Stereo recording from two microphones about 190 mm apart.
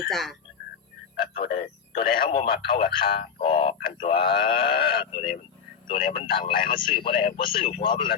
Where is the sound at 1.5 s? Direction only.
30° left (ahead or behind).